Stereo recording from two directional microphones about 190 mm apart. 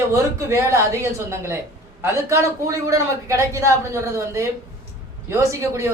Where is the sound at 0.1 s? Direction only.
15° right (ahead or behind).